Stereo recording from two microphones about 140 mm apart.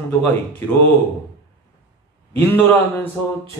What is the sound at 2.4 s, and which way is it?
Speech, 15° left (ahead or behind).